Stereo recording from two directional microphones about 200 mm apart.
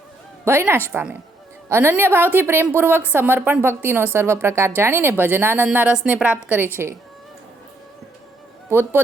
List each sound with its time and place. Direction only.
0.4 s speech: 10° right (ahead or behind)
8.7 s speech: 10° right (ahead or behind)